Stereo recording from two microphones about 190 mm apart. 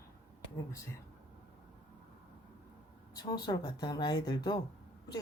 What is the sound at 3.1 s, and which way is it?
Speech, 20° left (ahead or behind).